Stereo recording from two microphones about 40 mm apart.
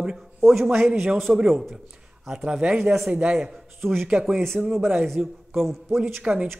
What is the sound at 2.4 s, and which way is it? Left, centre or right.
Speech, right.